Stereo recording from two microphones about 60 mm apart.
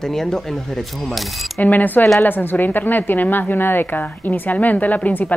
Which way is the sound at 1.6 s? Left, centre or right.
Left.